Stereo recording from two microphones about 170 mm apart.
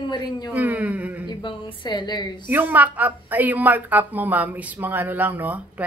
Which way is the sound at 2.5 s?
10° right (ahead or behind).